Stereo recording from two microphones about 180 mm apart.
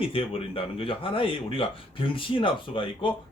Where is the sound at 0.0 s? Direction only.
30° left (ahead or behind).